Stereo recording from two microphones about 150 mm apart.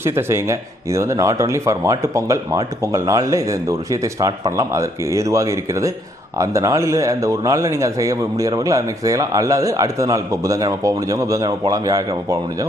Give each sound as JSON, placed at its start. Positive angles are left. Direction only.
{"t": 0.0, "sound": "a man's voice", "side_deg": -15}